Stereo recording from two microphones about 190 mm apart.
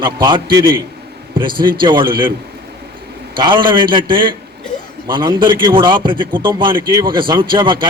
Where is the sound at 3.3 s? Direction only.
25° right (ahead or behind).